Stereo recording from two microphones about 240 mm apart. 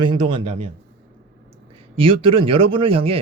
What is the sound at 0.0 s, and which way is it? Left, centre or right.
Speech, centre.